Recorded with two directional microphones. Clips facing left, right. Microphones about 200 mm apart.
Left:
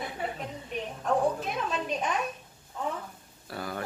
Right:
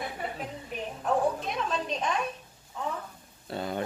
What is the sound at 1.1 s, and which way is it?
Speech, 5° left (ahead or behind).